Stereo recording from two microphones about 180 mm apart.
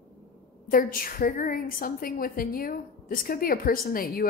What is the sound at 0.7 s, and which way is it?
A woman's voice, 55° left (ahead or behind).